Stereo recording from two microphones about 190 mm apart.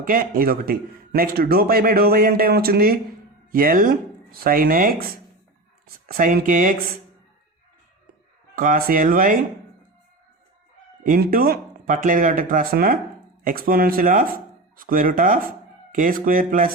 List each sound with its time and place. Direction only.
0.0 s a man's voice: 50° right (ahead or behind)
8.5 s a man's voice: 45° right (ahead or behind)
11.0 s a man's voice: 50° right (ahead or behind)